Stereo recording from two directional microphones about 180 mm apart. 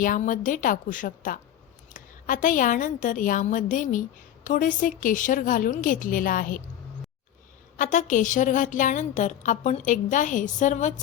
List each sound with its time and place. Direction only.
0.0 s a woman's voice: 50° left (ahead or behind)
7.8 s a woman's voice: 45° left (ahead or behind)